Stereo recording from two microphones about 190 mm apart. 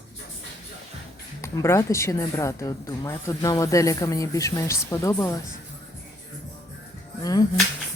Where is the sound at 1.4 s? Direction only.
15° left (ahead or behind).